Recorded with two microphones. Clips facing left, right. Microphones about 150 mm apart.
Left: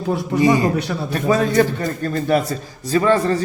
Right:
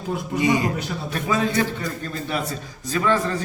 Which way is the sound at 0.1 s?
75° left (ahead or behind).